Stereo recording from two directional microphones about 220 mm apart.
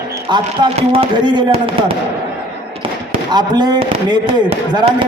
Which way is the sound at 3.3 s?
20° right (ahead or behind).